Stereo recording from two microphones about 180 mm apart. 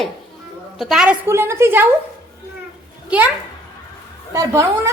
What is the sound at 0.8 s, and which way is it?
Speech, centre (ahead or behind).